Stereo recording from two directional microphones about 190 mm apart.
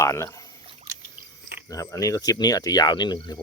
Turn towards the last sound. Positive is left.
turn(degrees=20)  # may be behind; listen again after turning